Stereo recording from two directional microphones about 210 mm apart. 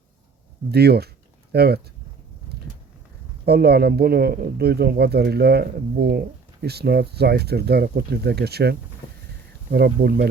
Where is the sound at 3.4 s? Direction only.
50° right (ahead or behind).